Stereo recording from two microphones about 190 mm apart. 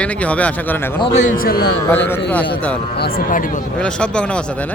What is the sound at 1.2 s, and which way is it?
Speech, 45° left (ahead or behind).